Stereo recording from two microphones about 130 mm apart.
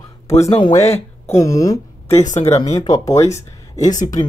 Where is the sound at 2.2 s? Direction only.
65° left (ahead or behind).